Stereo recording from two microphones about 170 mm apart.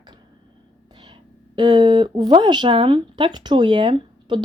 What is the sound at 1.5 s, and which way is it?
Speech, 25° right (ahead or behind).